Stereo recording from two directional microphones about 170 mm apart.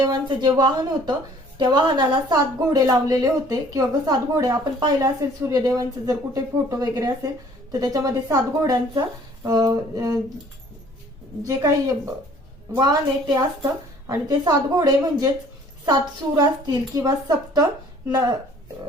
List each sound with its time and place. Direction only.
0.1 s a woman's voice: 25° right (ahead or behind)
11.4 s a woman's voice: 20° right (ahead or behind)